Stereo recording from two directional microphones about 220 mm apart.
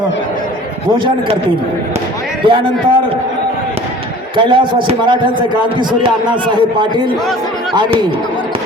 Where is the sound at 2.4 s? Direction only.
25° right (ahead or behind).